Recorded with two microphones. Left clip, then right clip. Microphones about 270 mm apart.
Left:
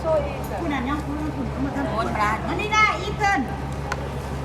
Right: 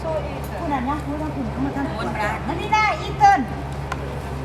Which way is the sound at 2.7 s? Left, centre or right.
Centre.